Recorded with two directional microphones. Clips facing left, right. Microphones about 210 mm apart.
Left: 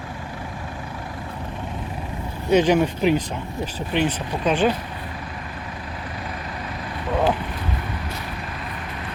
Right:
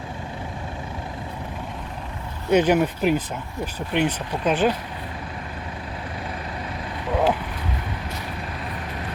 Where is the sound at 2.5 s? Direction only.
10° right (ahead or behind).